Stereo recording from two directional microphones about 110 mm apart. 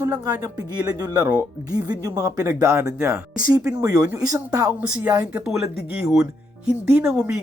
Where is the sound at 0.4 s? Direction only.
35° right (ahead or behind).